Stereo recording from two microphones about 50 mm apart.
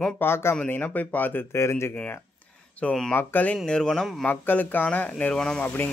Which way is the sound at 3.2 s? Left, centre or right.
Left.